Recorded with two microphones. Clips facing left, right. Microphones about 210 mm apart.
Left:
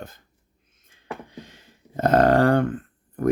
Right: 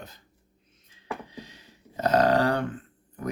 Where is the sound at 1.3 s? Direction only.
50° left (ahead or behind).